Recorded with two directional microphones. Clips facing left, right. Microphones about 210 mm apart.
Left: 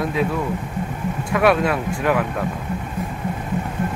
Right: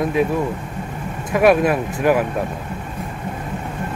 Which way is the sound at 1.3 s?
20° right (ahead or behind).